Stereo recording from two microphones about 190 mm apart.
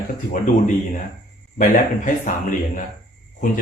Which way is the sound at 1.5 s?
45° left (ahead or behind).